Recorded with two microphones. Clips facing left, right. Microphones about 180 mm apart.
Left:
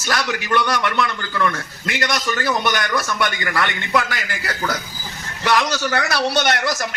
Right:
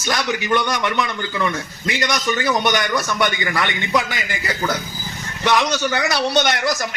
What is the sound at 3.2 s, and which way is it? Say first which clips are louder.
Speech: right 1 dB; 25° right (ahead or behind).